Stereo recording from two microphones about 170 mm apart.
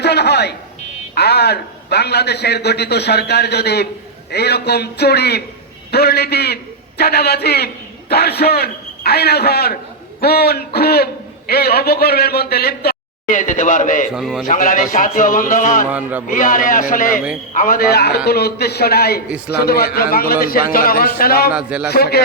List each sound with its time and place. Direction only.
0.0 s a sound: 75° left (ahead or behind)
1.1 s a man's voice: 75° left (ahead or behind); by 14.1 s 50° left (ahead or behind)
14.1 s a man's voice: 5° right (ahead or behind)
14.4 s a man's voice: 55° left (ahead or behind)
15.9 s a man's voice: 10° right (ahead or behind)
16.3 s a man's voice: 55° left (ahead or behind)
21.5 s a man's voice: 5° right (ahead or behind)
21.8 s a man's voice: 65° left (ahead or behind)